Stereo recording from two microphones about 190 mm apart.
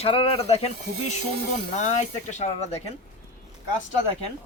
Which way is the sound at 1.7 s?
40° left (ahead or behind).